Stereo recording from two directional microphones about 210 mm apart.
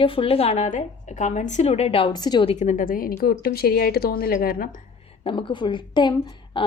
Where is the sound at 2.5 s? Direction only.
35° left (ahead or behind).